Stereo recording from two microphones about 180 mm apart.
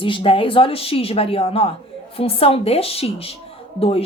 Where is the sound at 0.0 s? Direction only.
30° left (ahead or behind).